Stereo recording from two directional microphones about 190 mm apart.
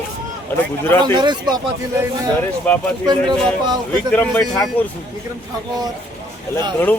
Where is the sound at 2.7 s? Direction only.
10° left (ahead or behind).